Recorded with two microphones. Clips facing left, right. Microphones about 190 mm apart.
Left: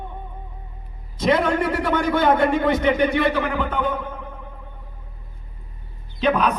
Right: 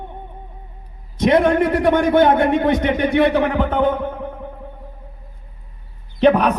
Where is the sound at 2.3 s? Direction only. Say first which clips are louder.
Right 3 dB; 60° right (ahead or behind).